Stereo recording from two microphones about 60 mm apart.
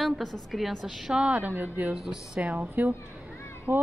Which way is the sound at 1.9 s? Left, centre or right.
Centre.